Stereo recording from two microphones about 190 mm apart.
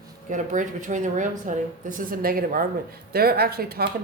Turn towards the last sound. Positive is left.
turn(degrees=-55)  # may be behind; listen again after turning